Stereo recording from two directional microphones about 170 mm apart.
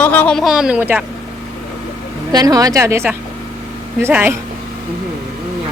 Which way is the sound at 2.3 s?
20° right (ahead or behind).